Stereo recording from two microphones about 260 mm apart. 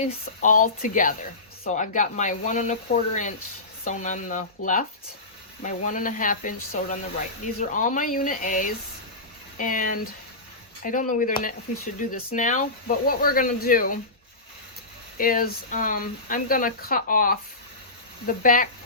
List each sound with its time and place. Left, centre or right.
0.0 s speech: left
15.2 s speech: left